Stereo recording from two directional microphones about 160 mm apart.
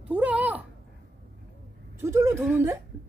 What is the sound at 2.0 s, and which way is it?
Speech, 15° right (ahead or behind).